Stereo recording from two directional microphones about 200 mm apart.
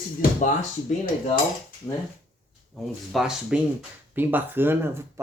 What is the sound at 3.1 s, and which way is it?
Speech, 5° right (ahead or behind).